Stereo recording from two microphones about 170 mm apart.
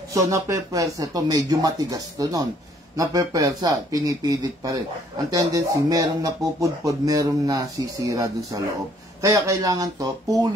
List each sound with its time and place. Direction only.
0.1 s speech: 20° right (ahead or behind)